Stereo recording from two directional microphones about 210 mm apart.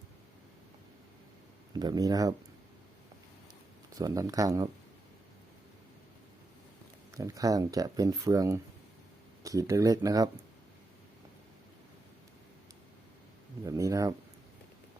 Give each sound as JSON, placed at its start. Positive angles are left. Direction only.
{"t": 1.8, "sound": "speech", "side_deg": -20}
{"t": 3.9, "sound": "speech", "side_deg": -15}
{"t": 7.2, "sound": "speech", "side_deg": -15}
{"t": 13.7, "sound": "speech", "side_deg": -15}